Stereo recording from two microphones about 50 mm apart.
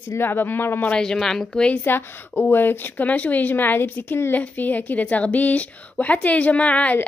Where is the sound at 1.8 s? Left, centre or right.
Left.